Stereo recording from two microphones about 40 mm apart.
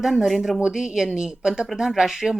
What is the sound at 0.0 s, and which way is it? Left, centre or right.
Speech, centre.